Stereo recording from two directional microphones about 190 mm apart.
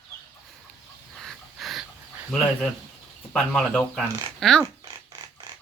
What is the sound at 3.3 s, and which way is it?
Speech, centre (ahead or behind).